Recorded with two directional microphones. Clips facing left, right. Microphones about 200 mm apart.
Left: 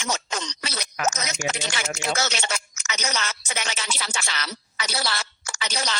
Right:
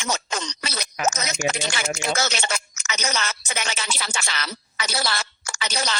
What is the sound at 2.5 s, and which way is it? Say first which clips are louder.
Music: right 2 dB; 55° right (ahead or behind).